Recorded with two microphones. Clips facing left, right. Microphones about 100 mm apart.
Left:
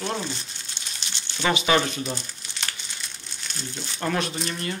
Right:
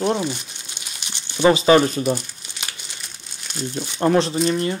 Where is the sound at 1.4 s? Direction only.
35° right (ahead or behind).